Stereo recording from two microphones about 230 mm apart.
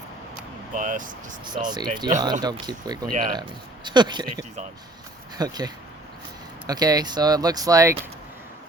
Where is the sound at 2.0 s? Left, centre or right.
Right.